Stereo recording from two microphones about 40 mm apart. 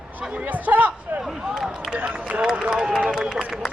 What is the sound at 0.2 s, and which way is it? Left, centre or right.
Speech, right.